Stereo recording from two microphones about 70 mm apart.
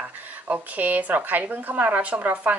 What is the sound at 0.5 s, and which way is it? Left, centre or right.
A woman's voice, right.